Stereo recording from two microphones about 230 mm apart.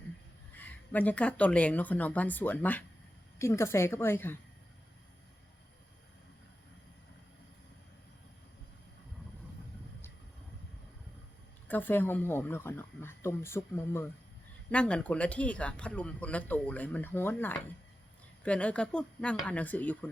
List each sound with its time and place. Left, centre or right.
0.5 s speech: centre
11.7 s speech: centre